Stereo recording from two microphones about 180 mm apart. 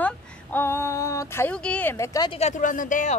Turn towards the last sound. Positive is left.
turn(degrees=45)  # may be behind; listen again after turning